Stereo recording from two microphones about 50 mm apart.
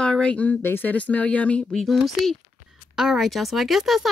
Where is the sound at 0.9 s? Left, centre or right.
Left.